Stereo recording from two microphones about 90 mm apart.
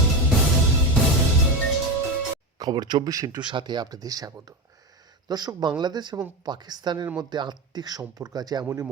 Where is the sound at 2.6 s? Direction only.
50° right (ahead or behind).